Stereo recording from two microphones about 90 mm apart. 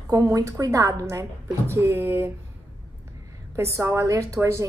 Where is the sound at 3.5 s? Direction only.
30° right (ahead or behind).